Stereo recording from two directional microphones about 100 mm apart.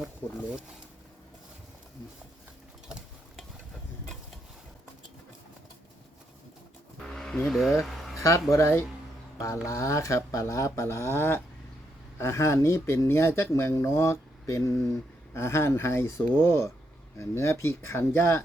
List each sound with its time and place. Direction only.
0.2 s speech: 20° left (ahead or behind)
7.0 s vehicle: 5° left (ahead or behind)
7.8 s a sound: centre (ahead or behind)
8.1 s speech: 30° left (ahead or behind)